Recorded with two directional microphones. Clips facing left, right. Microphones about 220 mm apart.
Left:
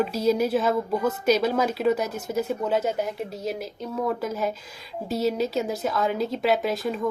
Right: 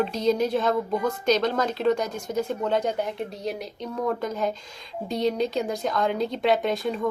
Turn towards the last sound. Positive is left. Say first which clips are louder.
# even
turn(degrees=0)  # may be behind; listen again after turning